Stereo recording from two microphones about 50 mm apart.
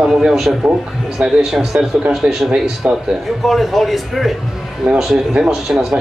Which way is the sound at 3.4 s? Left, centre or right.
Centre.